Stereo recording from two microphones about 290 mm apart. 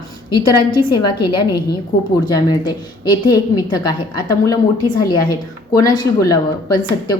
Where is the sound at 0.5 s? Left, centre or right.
Centre.